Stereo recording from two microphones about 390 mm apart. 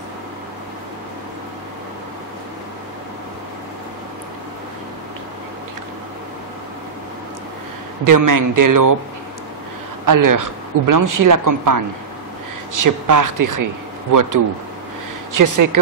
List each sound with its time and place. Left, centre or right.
8.0 s speech: right
10.0 s speech: right
15.3 s speech: right